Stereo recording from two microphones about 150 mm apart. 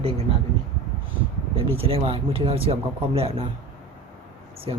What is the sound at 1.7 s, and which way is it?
Speech, 40° right (ahead or behind).